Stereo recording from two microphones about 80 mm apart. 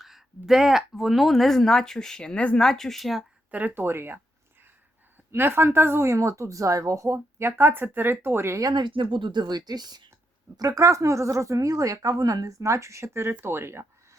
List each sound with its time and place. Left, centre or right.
0.0 s speech: centre
2.6 s speech: centre
3.5 s speech: right
5.3 s speech: right
8.6 s speech: right
10.6 s speech: right